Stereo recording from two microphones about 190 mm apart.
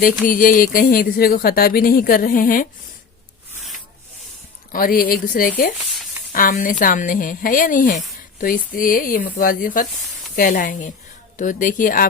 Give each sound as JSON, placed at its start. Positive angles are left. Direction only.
{"t": 0.0, "sound": "speech", "side_deg": 45}
{"t": 4.7, "sound": "speech", "side_deg": 50}